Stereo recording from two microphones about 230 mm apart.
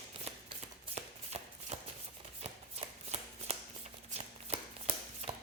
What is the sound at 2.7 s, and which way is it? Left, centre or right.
Shuffling cards, right.